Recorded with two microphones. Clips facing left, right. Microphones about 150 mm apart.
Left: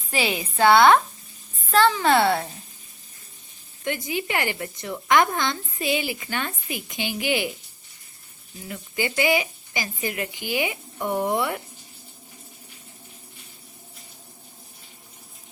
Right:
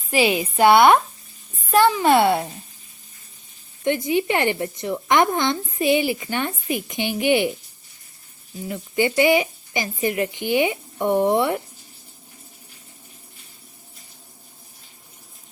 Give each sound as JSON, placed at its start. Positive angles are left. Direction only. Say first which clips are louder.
{"t": 0.1, "sound": "a woman's voice", "louder": "right 6 dB", "side_deg": -15}
{"t": 3.8, "sound": "speech", "louder": "right 7 dB", "side_deg": -25}
{"t": 8.6, "sound": "speech", "louder": "right 7 dB", "side_deg": -25}